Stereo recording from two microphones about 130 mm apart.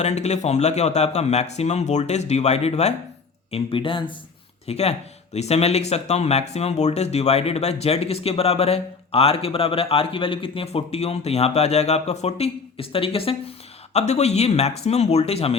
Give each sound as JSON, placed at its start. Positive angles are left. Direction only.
{"t": 0.0, "sound": "speech", "side_deg": 60}
{"t": 3.5, "sound": "speech", "side_deg": 45}
{"t": 4.6, "sound": "speech", "side_deg": 55}
{"t": 13.9, "sound": "speech", "side_deg": 60}